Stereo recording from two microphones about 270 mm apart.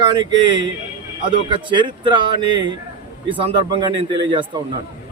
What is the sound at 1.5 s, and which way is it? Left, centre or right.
Speech, centre.